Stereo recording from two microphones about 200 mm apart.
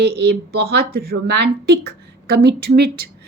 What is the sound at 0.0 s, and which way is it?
Speech, 55° right (ahead or behind).